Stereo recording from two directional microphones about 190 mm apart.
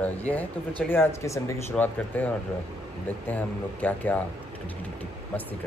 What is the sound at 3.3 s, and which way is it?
Speech, 10° left (ahead or behind).